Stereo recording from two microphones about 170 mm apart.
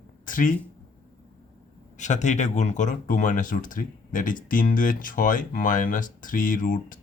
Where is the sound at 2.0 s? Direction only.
45° left (ahead or behind).